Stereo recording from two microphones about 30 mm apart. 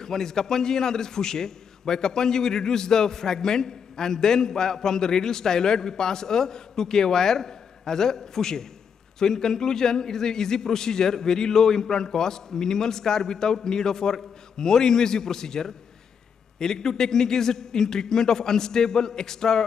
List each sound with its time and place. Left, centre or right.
0.0 s a man's voice: centre